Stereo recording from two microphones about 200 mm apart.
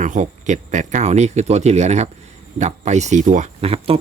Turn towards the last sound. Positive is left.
turn(degrees=-30)  # may be behind; listen again after turning